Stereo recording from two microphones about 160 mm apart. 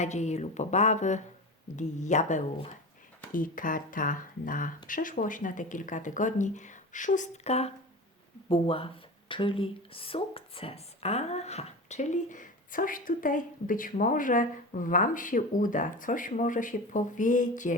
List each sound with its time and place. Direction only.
0.0 s speech: 45° left (ahead or behind)
3.3 s speech: 60° left (ahead or behind)